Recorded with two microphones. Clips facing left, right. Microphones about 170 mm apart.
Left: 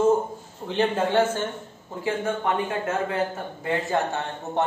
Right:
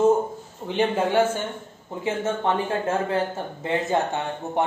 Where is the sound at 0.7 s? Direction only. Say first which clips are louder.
Right 1 dB; 10° right (ahead or behind).